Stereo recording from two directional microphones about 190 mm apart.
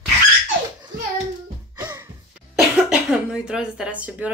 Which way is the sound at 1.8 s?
20° right (ahead or behind).